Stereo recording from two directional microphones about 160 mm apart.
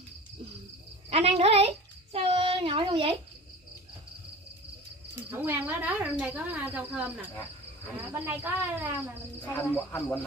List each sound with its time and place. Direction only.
1.1 s speech: 40° right (ahead or behind)
5.3 s speech: 10° right (ahead or behind)
9.5 s speech: 15° left (ahead or behind)